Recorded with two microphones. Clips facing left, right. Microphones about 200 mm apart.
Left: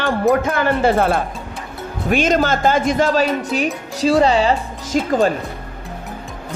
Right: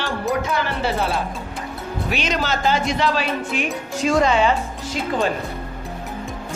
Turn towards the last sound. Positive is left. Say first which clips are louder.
# left 6 dB
turn(degrees=40)  # may be behind; listen again after turning